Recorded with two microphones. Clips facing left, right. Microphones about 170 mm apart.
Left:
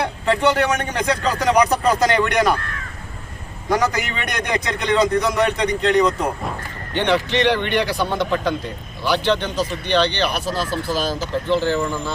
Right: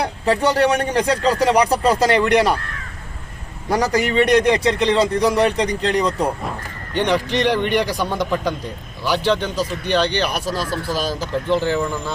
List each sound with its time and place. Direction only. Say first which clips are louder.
0.3 s a man's voice: right 2 dB; 35° right (ahead or behind)
3.7 s a man's voice: right 2 dB; 35° right (ahead or behind)
6.9 s speech: even; 10° right (ahead or behind)